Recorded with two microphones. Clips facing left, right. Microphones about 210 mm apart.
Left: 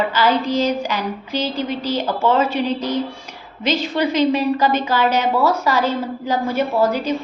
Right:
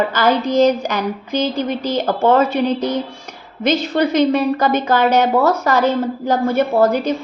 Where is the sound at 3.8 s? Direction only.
40° right (ahead or behind).